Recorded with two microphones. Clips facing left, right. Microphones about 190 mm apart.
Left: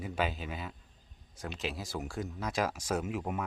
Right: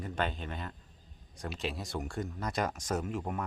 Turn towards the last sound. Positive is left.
turn(degrees=5)  # may be behind; listen again after turning